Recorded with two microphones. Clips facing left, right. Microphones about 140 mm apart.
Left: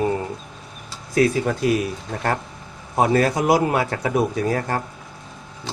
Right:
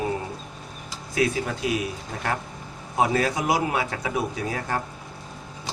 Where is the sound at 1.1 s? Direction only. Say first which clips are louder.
Left 6 dB; 45° left (ahead or behind).